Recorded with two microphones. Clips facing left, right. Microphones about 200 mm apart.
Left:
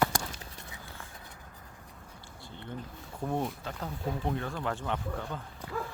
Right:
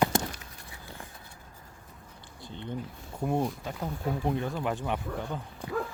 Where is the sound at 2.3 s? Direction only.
20° right (ahead or behind).